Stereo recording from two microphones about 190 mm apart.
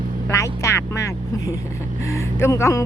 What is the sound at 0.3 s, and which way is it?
Music, 15° left (ahead or behind).